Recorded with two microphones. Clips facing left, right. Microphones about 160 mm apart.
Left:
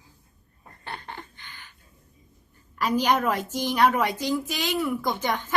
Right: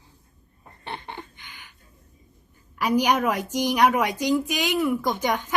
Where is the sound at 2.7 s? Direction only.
10° right (ahead or behind).